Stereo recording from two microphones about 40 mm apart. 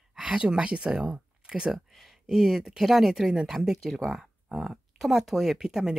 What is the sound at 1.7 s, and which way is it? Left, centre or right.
Speech, centre.